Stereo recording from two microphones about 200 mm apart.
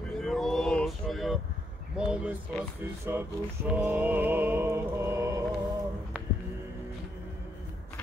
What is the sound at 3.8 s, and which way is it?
Mantra, 10° right (ahead or behind).